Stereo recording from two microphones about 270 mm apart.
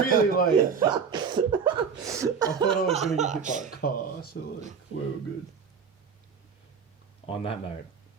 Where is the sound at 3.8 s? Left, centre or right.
Left.